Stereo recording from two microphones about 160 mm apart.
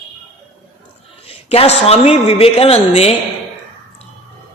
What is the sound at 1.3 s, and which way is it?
A woman's voice, 40° left (ahead or behind).